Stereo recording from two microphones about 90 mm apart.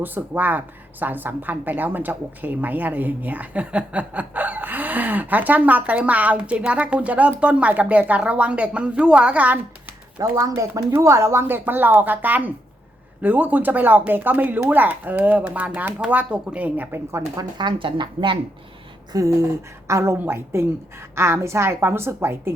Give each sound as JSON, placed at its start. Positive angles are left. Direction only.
{"t": 0.0, "sound": "a woman's voice", "side_deg": -20}
{"t": 10.4, "sound": "a woman's voice", "side_deg": -40}
{"t": 17.6, "sound": "a woman's voice", "side_deg": -65}
{"t": 19.1, "sound": "a woman's voice", "side_deg": -40}